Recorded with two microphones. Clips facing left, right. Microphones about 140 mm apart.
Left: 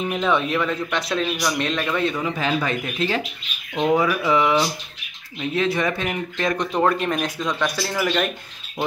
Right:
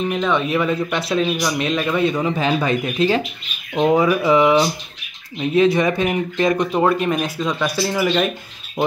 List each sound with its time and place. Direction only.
0.0 s speech: 5° left (ahead or behind)
0.6 s speech: 10° right (ahead or behind)